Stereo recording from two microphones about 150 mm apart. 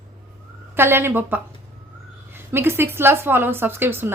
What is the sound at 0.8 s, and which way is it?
A woman's voice, 15° right (ahead or behind).